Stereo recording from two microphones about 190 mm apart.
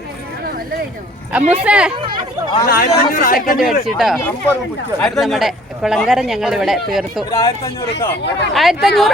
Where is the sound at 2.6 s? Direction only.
55° left (ahead or behind).